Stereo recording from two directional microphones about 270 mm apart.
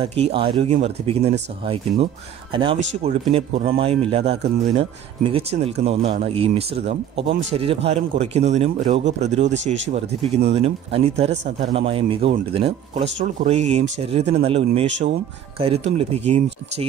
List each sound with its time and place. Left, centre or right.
0.0 s speech: right
5.9 s speech: right